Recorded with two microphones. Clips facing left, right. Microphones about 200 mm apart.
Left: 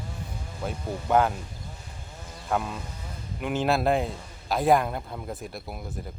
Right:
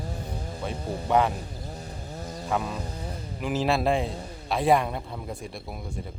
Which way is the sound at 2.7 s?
35° right (ahead or behind).